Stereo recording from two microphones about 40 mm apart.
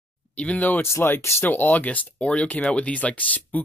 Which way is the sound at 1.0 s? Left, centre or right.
Left.